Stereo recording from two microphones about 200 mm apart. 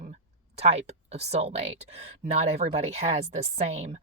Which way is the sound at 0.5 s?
30° right (ahead or behind).